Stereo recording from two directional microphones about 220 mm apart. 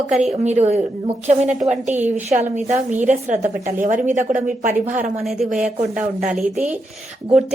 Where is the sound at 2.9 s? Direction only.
10° right (ahead or behind).